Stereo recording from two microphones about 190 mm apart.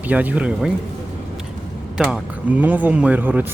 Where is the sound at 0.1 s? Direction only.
10° right (ahead or behind).